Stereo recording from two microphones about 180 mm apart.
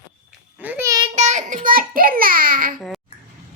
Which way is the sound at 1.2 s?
40° right (ahead or behind).